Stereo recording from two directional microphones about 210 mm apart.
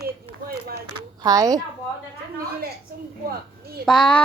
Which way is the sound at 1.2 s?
15° right (ahead or behind).